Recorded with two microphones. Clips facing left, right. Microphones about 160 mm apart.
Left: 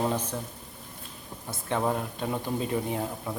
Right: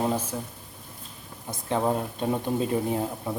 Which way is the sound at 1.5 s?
20° right (ahead or behind).